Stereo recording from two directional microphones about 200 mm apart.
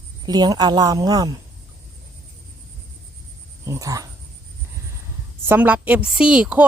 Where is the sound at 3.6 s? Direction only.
15° right (ahead or behind).